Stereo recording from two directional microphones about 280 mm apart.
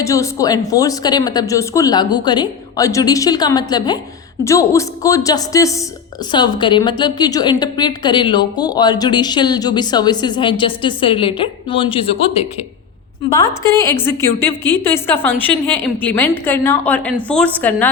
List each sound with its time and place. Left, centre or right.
0.0 s a woman's voice: centre
13.3 s a woman's voice: centre